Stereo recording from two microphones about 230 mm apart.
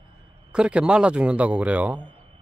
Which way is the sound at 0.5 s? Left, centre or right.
Centre.